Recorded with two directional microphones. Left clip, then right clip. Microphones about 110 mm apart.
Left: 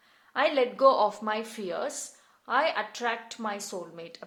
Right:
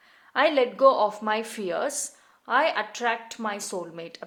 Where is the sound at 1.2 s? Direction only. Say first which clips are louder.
Right 4 dB; 20° right (ahead or behind).